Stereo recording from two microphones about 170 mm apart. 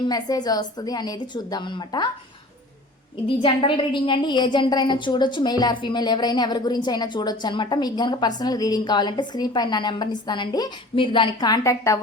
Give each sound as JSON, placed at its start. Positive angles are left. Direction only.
{"t": 0.0, "sound": "a woman's voice", "side_deg": 25}
{"t": 3.2, "sound": "a woman's voice", "side_deg": 30}